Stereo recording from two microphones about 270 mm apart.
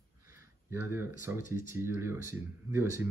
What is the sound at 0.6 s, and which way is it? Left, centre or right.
Speech, centre.